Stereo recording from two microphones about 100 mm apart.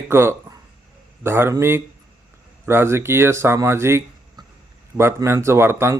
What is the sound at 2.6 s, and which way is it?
Speech, 25° right (ahead or behind).